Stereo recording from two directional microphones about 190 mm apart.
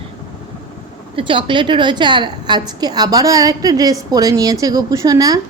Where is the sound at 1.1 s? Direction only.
25° right (ahead or behind).